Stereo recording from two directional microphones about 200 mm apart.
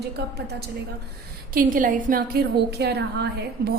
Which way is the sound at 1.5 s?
45° right (ahead or behind).